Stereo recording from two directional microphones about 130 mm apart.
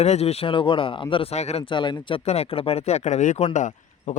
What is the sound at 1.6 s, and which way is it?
Speech, 35° left (ahead or behind).